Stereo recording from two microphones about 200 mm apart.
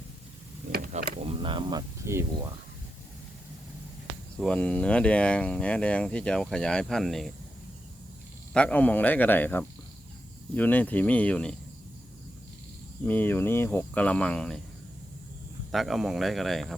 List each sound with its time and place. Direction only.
0.7 s a sound: 45° right (ahead or behind); by 2.5 s 15° right (ahead or behind)
4.4 s speech: 5° left (ahead or behind)
8.5 s speech: 5° left (ahead or behind)
13.1 s speech: 10° left (ahead or behind)
15.7 s speech: centre (ahead or behind)